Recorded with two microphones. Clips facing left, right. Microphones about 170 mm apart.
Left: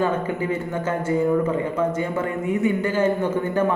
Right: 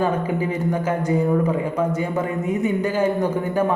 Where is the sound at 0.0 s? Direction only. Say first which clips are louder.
Right 1 dB; 15° right (ahead or behind).